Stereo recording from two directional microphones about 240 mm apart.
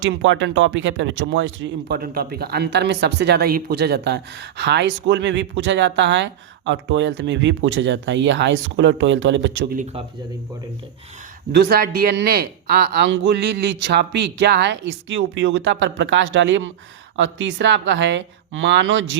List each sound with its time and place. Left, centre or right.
0.0 s speech: right
11.5 s speech: right